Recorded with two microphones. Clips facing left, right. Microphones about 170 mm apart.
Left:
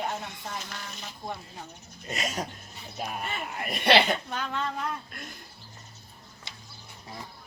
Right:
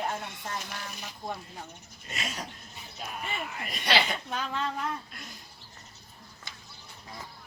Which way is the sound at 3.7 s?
60° left (ahead or behind).